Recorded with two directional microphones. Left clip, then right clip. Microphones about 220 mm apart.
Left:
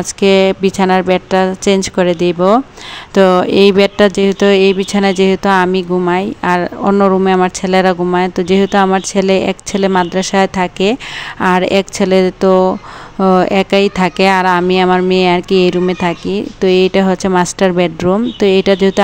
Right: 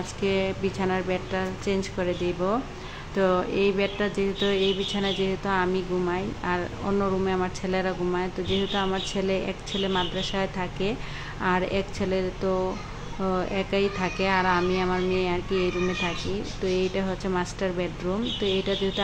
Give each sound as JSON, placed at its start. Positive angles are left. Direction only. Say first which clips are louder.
{"t": 0.2, "sound": "speech", "louder": "left 16 dB", "side_deg": 45}